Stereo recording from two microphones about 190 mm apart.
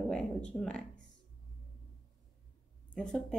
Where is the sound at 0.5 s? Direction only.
5° left (ahead or behind).